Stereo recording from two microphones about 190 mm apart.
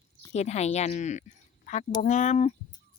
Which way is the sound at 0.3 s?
35° left (ahead or behind).